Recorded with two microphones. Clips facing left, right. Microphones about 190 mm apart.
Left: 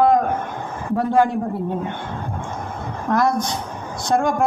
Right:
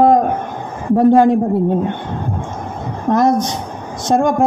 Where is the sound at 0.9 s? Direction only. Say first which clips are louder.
Right 8 dB; 25° right (ahead or behind).